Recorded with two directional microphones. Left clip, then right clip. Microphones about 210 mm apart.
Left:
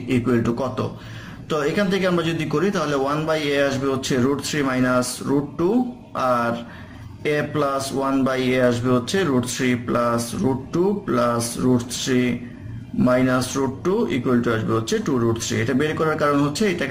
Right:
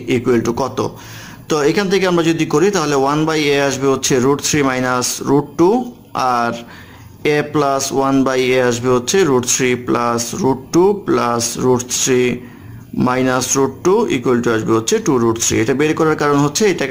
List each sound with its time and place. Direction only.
0.1 s speech: 40° right (ahead or behind)
6.1 s a sound: 40° right (ahead or behind)
7.2 s speech: 40° right (ahead or behind)